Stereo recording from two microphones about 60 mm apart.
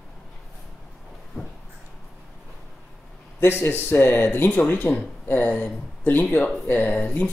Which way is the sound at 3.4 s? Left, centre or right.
Left.